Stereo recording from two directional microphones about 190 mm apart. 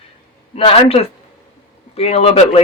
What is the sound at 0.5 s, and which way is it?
Speech, 30° left (ahead or behind).